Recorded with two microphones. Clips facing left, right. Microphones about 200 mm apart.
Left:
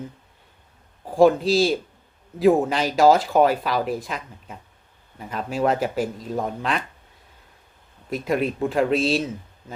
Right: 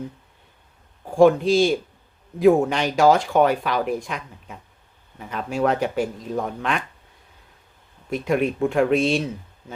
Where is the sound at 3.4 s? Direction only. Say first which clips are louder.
Even; 35° left (ahead or behind).